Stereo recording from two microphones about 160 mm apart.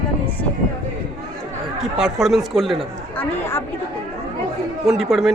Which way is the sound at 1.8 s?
5° right (ahead or behind).